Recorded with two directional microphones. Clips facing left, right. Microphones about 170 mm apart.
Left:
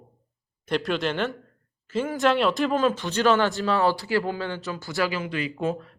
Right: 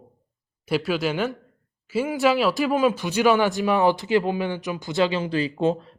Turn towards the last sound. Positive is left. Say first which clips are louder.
# right 5 dB
turn(degrees=-25)  # may be behind; listen again after turning